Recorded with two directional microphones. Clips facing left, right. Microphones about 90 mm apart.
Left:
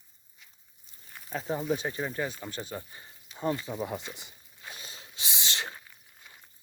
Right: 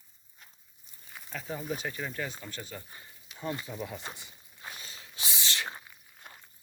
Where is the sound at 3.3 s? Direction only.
30° left (ahead or behind).